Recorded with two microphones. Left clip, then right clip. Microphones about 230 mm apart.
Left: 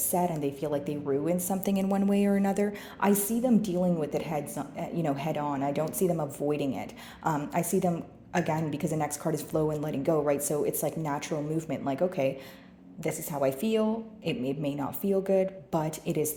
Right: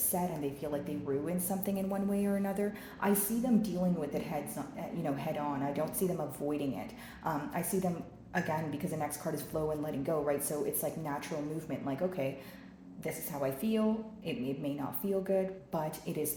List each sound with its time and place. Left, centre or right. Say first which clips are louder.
0.1 s a woman's voice: left 7 dB; left